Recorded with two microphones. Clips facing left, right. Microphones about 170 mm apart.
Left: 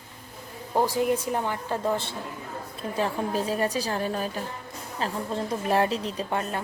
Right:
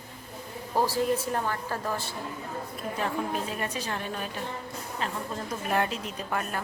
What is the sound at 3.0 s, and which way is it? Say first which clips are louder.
A woman's voice: left 4 dB; 35° left (ahead or behind).